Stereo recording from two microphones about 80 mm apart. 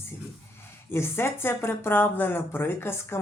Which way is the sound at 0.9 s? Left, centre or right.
Left.